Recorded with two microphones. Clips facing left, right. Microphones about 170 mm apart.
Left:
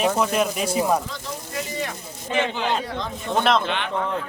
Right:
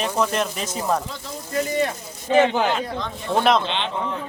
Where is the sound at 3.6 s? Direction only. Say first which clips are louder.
Even; 20° right (ahead or behind).